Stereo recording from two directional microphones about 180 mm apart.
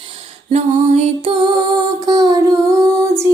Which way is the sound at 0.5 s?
35° right (ahead or behind).